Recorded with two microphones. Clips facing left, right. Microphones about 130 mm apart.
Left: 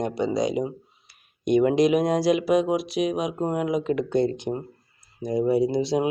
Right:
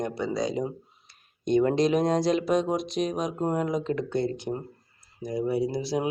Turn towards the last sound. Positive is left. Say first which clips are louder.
# left 5 dB
turn(degrees=20)  # may be behind; listen again after turning